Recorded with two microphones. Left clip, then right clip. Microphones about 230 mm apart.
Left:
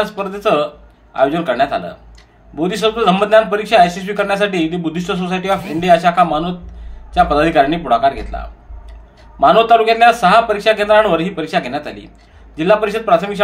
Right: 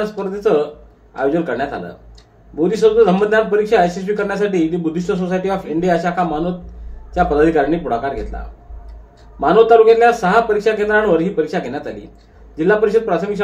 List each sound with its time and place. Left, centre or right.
0.0 s a man's voice: left
9.4 s a man's voice: left